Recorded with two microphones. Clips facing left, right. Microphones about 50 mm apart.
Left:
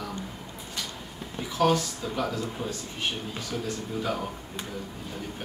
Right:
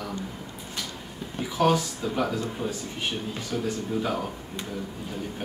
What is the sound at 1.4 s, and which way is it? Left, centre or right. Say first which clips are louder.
Speech: right 1 dB; centre.